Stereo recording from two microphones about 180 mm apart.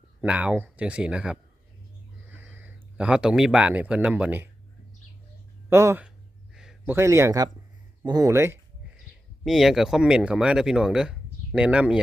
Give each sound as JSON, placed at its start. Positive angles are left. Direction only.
{"t": 0.2, "sound": "speech", "side_deg": -5}
{"t": 5.7, "sound": "speech", "side_deg": -15}
{"t": 6.5, "sound": "a sound", "side_deg": -5}
{"t": 6.9, "sound": "speech", "side_deg": -15}
{"t": 9.4, "sound": "speech", "side_deg": 0}